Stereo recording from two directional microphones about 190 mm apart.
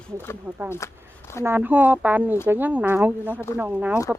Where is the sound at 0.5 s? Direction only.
10° right (ahead or behind).